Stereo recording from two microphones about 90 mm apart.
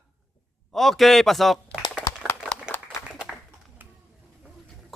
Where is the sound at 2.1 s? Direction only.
45° left (ahead or behind).